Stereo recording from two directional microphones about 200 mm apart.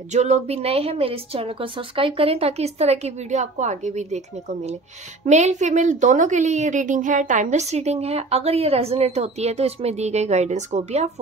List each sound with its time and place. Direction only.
0.1 s a woman's voice: 35° right (ahead or behind)